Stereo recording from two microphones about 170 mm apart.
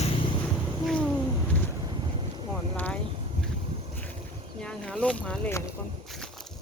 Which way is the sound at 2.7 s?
10° left (ahead or behind).